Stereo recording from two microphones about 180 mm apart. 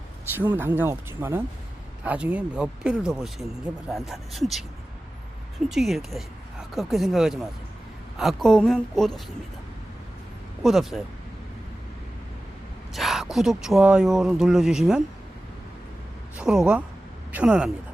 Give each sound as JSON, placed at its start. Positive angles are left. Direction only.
{"t": 0.3, "sound": "speech", "side_deg": -10}
{"t": 5.7, "sound": "speech", "side_deg": 0}
{"t": 10.6, "sound": "speech", "side_deg": 0}
{"t": 12.9, "sound": "speech", "side_deg": 0}
{"t": 16.4, "sound": "speech", "side_deg": -5}